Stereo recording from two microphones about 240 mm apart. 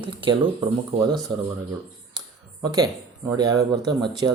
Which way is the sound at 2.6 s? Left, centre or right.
Centre.